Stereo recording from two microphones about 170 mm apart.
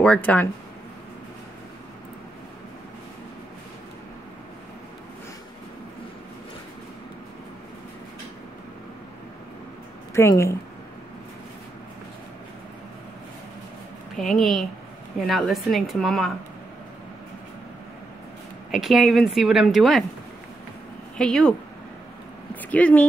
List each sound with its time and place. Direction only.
0.0 s a woman's voice: 10° left (ahead or behind)
10.1 s a woman's voice: 15° left (ahead or behind)
14.1 s a woman's voice: centre (ahead or behind)
18.7 s a woman's voice: 5° right (ahead or behind)
21.2 s a woman's voice: 5° left (ahead or behind)
22.6 s speech: 10° left (ahead or behind)